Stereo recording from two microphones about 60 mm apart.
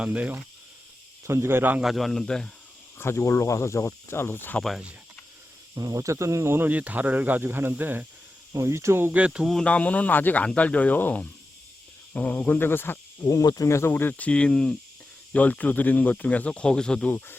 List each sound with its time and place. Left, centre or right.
0.0 s speech: right
1.2 s speech: right
1.8 s a man's voice: centre
3.0 s speech: left
5.7 s speech: right
6.7 s speech: right
8.6 s speech: right
9.1 s speech: right
9.6 s speech: left
13.2 s speech: left
13.7 s speech: left
13.9 s speech: left; by 14.8 s centre
15.3 s speech: left